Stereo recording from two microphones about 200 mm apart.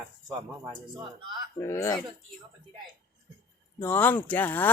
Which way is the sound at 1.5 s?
15° left (ahead or behind).